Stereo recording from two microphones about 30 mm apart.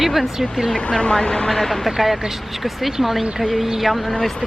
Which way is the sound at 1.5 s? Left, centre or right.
Centre.